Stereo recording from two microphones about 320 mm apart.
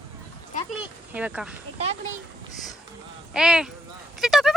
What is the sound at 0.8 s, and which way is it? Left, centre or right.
Speech, centre.